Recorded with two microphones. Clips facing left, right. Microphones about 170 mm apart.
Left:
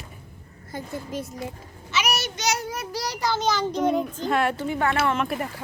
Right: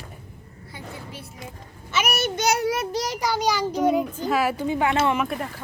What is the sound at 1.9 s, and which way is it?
Speech, 50° right (ahead or behind).